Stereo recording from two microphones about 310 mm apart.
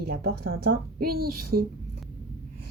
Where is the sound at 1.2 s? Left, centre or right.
Right.